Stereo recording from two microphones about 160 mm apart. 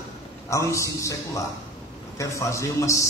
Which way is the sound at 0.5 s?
20° left (ahead or behind).